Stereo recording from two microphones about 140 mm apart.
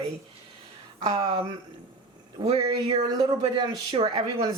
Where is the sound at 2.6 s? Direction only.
25° right (ahead or behind).